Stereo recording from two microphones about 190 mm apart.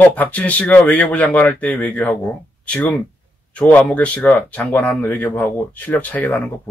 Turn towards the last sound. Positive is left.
turn(degrees=10)  # may be behind; listen again after turning